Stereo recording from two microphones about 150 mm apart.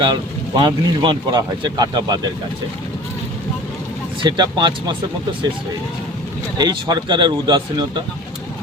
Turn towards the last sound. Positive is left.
turn(degrees=-30)  # may be behind; listen again after turning